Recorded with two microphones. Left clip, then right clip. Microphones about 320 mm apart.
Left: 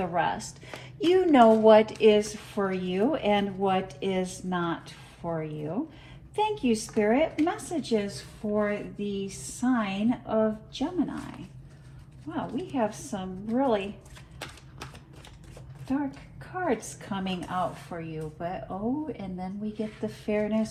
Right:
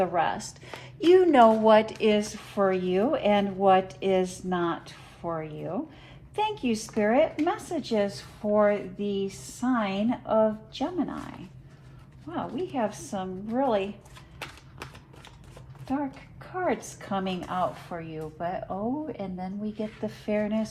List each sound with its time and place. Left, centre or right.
0.0 s a woman's voice: right
12.3 s a woman's voice: right
16.4 s a woman's voice: right